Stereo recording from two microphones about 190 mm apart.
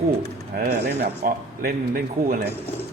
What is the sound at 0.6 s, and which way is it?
Speech, 55° right (ahead or behind).